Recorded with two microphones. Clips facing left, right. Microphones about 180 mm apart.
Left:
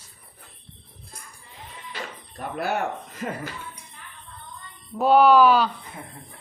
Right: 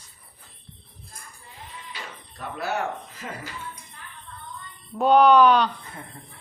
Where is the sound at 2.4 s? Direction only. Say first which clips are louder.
Left 3 dB; 55° left (ahead or behind).